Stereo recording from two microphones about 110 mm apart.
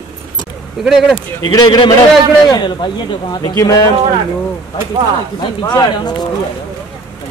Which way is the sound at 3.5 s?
30° left (ahead or behind).